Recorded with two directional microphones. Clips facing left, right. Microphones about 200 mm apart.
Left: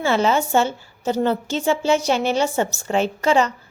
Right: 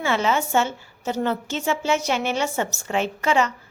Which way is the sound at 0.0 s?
35° left (ahead or behind).